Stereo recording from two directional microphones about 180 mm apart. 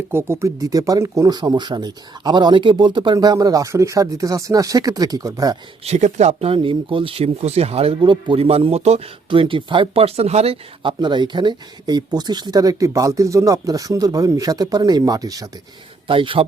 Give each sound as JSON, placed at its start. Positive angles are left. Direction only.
{"t": 0.1, "sound": "speech", "side_deg": -15}
{"t": 5.8, "sound": "speech", "side_deg": -40}